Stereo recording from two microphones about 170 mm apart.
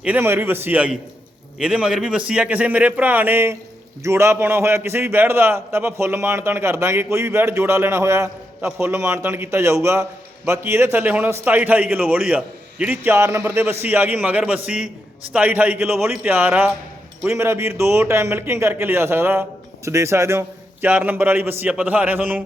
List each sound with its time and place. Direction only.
0.0 s a man's voice: 10° right (ahead or behind)